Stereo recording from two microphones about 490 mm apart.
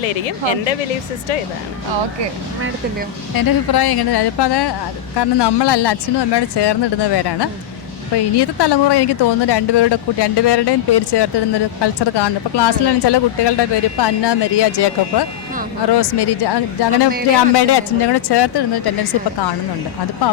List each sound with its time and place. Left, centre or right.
3.3 s speech: left